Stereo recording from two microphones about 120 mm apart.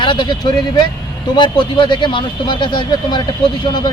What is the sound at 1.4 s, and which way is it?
Speech, 40° left (ahead or behind).